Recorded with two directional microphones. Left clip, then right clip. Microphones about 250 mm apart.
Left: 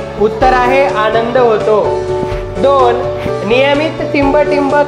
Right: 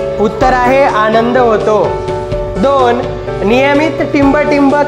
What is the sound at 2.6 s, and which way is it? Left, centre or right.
A woman's voice, right.